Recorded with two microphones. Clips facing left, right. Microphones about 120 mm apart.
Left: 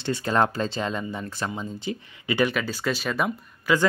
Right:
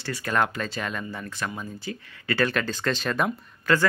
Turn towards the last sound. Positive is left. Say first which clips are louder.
# even
turn(degrees=5)  # may be behind; listen again after turning